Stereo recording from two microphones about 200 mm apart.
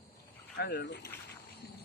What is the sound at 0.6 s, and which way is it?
Speech, 55° left (ahead or behind).